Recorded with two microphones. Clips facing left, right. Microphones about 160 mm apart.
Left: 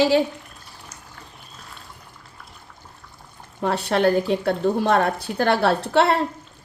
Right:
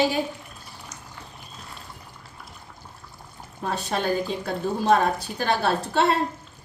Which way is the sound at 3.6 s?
70° left (ahead or behind).